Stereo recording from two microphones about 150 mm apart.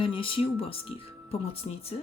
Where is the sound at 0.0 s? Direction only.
35° left (ahead or behind).